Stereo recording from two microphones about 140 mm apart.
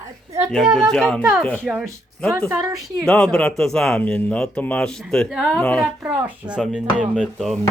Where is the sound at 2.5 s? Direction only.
15° right (ahead or behind).